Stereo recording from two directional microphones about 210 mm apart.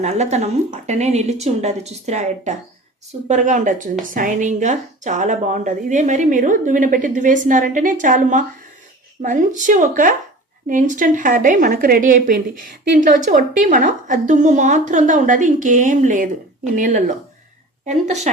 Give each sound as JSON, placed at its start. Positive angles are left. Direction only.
{"t": 0.0, "sound": "a woman's voice", "side_deg": -30}